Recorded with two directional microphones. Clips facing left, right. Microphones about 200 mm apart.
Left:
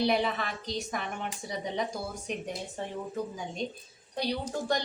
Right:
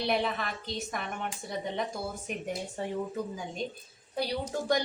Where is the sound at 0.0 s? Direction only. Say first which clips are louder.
Left 2 dB; centre (ahead or behind).